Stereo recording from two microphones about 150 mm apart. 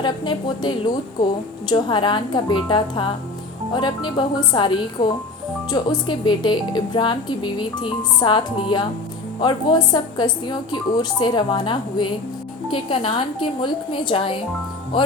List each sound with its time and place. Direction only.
0.0 s speech: 30° left (ahead or behind)